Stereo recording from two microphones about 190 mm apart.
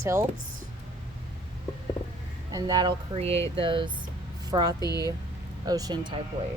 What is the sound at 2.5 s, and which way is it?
Speech, 20° right (ahead or behind).